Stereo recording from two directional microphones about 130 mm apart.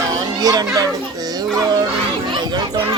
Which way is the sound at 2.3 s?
35° right (ahead or behind).